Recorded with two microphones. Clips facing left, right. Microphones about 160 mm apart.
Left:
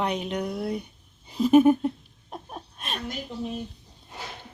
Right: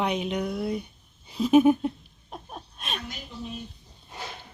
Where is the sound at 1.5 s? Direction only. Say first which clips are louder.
Left 1 dB; centre (ahead or behind).